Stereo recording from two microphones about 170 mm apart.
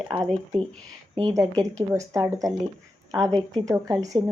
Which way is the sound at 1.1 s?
25° right (ahead or behind).